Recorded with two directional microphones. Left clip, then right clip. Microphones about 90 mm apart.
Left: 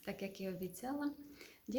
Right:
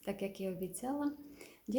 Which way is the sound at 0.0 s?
30° right (ahead or behind).